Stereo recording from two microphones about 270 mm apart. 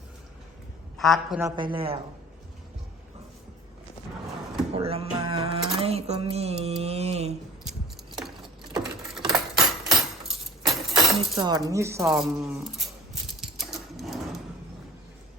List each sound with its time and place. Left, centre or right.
0.9 s a man's voice: centre
1.5 s speech: centre
4.7 s a sound: right
9.1 s keys jangling: centre
10.9 s speech: centre
12.8 s a sound: centre